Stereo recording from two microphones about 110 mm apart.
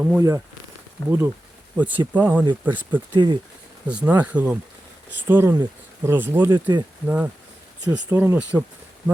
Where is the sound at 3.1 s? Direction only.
45° right (ahead or behind).